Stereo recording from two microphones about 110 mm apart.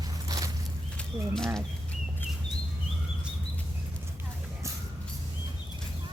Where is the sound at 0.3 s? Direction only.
30° right (ahead or behind).